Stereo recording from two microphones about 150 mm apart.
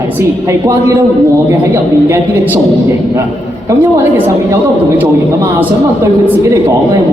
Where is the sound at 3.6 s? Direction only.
15° right (ahead or behind).